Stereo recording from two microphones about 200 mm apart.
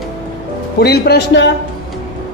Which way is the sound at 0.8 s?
55° left (ahead or behind).